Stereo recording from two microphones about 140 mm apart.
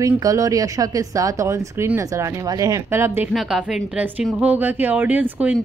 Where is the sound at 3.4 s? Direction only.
5° right (ahead or behind).